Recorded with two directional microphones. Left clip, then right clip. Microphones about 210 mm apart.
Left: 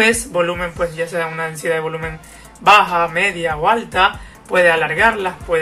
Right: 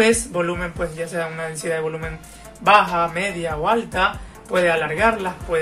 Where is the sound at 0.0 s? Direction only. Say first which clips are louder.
Left 3 dB; 10° right (ahead or behind).